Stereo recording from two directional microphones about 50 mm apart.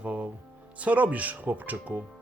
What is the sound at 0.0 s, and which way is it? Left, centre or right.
Music, right.